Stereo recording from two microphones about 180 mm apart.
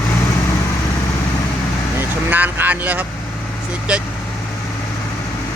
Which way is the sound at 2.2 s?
10° right (ahead or behind).